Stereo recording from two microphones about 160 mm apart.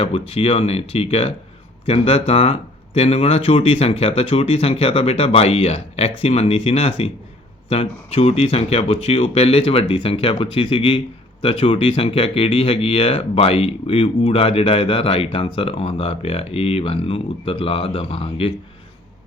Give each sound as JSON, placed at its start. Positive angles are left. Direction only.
{"t": 0.0, "sound": "speech", "side_deg": 40}